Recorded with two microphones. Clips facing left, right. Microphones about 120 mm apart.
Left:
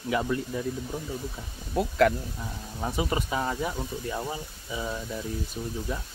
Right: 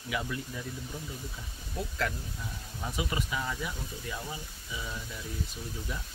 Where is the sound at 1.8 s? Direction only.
60° left (ahead or behind).